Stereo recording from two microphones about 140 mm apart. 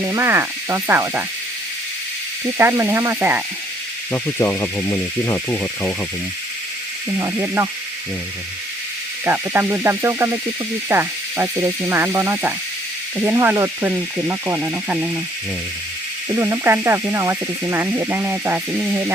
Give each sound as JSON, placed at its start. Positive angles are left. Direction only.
{"t": 0.0, "sound": "speech", "side_deg": -20}
{"t": 2.6, "sound": "speech", "side_deg": -20}
{"t": 4.1, "sound": "speech", "side_deg": 15}
{"t": 7.2, "sound": "speech", "side_deg": -20}
{"t": 9.2, "sound": "speech", "side_deg": -20}
{"t": 16.3, "sound": "speech", "side_deg": -20}